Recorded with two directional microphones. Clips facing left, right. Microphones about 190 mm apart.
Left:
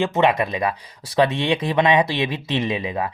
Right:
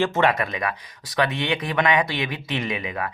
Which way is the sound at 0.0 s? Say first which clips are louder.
Left 2 dB; 20° left (ahead or behind).